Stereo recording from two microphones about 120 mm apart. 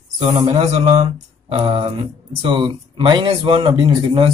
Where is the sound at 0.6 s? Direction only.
70° right (ahead or behind).